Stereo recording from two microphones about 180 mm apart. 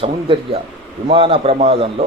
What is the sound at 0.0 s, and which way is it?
A man's voice, 30° right (ahead or behind).